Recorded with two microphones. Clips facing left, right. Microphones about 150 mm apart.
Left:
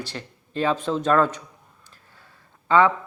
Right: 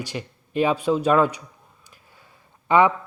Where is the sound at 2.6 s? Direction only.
15° right (ahead or behind).